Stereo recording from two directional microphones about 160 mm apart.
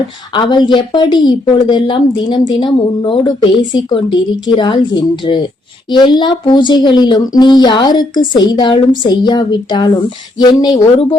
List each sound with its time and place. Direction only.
0.3 s a woman's voice: 30° left (ahead or behind)